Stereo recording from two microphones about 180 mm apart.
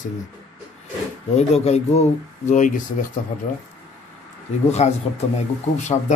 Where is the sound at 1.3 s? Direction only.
35° left (ahead or behind).